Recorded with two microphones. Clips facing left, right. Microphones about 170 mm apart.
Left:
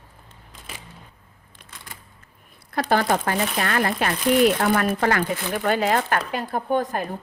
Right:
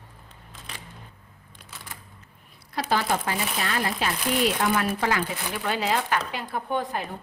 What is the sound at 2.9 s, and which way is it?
Speech, 55° left (ahead or behind).